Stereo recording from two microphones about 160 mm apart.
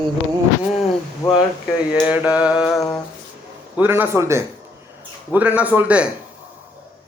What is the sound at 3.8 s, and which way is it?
Speech, 15° right (ahead or behind).